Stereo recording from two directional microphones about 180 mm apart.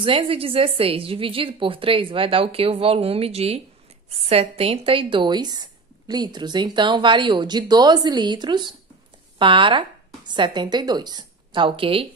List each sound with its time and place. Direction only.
0.0 s a woman's voice: 30° right (ahead or behind)